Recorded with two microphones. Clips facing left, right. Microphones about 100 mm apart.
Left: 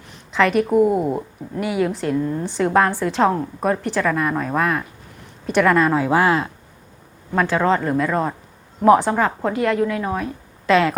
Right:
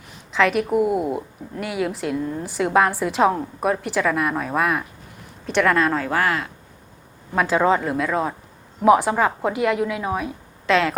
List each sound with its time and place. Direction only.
0.3 s a woman's voice: centre (ahead or behind)
5.5 s speech: 5° left (ahead or behind); by 6.5 s 25° left (ahead or behind)
7.3 s a woman's voice: 10° right (ahead or behind)
10.7 s a woman's voice: centre (ahead or behind)